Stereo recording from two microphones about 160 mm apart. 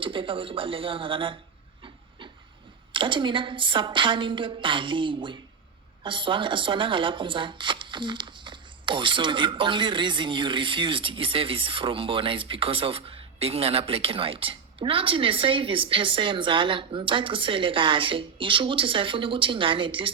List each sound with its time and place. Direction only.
0.0 s speech: 30° right (ahead or behind)
1.8 s hiss: 30° right (ahead or behind)
2.9 s speech: 30° right (ahead or behind)